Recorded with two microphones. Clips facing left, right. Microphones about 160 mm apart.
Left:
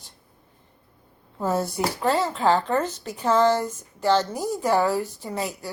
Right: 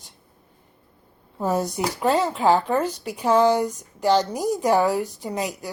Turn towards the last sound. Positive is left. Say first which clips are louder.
# right 2 dB
turn(degrees=-15)  # may be behind; listen again after turning